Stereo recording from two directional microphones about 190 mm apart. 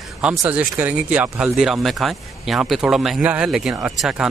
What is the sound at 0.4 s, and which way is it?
Speech, 10° right (ahead or behind).